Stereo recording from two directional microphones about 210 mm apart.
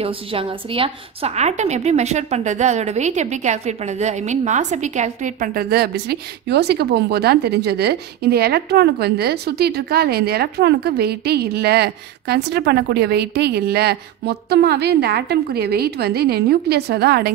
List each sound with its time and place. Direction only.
0.0 s a woman's voice: 25° right (ahead or behind); by 17.3 s 50° right (ahead or behind)